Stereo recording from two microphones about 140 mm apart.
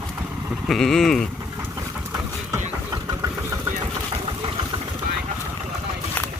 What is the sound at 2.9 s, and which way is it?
Vehicle, 30° right (ahead or behind).